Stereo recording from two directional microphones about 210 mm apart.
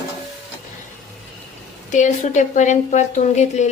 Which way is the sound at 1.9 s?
35° left (ahead or behind).